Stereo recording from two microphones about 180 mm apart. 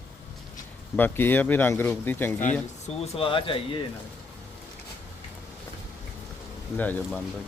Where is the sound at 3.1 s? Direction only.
30° left (ahead or behind).